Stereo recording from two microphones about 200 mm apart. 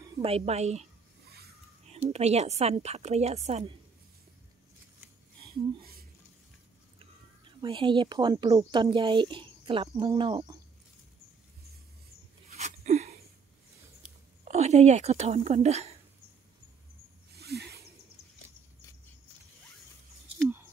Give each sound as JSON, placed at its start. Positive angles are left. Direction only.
{"t": 0.2, "sound": "speech", "side_deg": -30}
{"t": 2.1, "sound": "speech", "side_deg": -30}
{"t": 7.6, "sound": "speech", "side_deg": -25}
{"t": 12.4, "sound": "a sound", "side_deg": -35}
{"t": 14.4, "sound": "speech", "side_deg": -35}
{"t": 17.4, "sound": "snake", "side_deg": -55}